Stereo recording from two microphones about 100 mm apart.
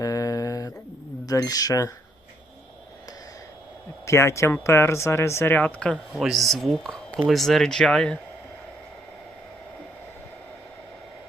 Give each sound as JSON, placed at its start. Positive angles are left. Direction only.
{"t": 0.0, "sound": "a sound", "side_deg": 35}
{"t": 1.2, "sound": "speech", "side_deg": 35}
{"t": 4.0, "sound": "speech", "side_deg": 25}
{"t": 6.1, "sound": "speech", "side_deg": 0}